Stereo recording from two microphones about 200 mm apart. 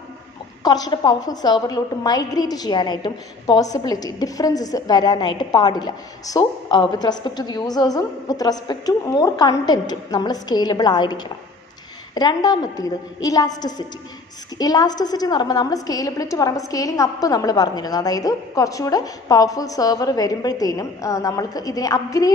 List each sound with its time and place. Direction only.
0.7 s a woman's voice: 20° left (ahead or behind)